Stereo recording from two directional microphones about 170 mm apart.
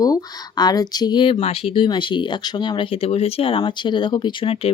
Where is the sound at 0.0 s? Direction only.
25° left (ahead or behind).